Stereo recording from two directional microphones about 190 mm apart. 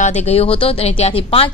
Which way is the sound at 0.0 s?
35° left (ahead or behind).